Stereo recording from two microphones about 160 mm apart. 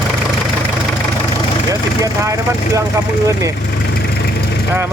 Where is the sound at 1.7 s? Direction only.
20° right (ahead or behind).